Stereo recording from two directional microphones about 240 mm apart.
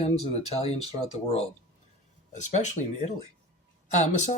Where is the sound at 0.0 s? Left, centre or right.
Left.